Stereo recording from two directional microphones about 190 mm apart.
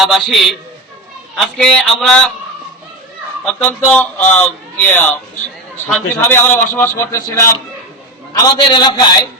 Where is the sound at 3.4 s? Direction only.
10° left (ahead or behind).